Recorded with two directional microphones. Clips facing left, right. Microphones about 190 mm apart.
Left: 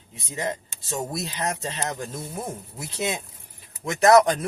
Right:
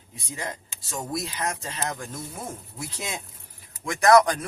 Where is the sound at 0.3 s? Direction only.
25° left (ahead or behind).